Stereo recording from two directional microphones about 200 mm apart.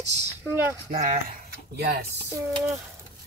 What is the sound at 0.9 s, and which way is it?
Speech, 45° right (ahead or behind).